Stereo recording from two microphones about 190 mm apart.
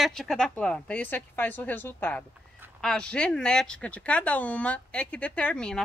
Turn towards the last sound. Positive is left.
turn(degrees=5)  # may be behind; listen again after turning